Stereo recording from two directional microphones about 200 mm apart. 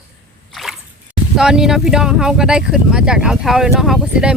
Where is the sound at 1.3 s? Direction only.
5° right (ahead or behind).